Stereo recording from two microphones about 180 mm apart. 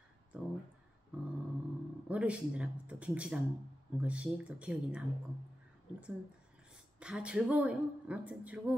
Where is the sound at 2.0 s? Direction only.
5° right (ahead or behind).